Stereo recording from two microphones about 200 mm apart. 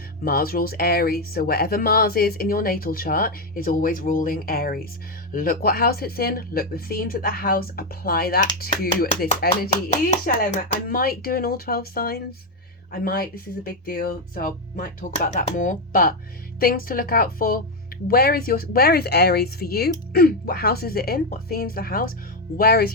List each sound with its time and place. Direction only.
0.3 s speech: 45° left (ahead or behind)
9.9 s speech: 35° left (ahead or behind)
10.8 s speech: 45° left (ahead or behind)